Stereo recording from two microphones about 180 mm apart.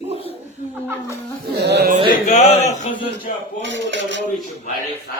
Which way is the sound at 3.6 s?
80° right.